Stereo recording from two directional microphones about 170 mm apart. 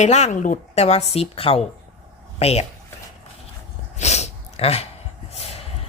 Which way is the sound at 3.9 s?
40° left (ahead or behind).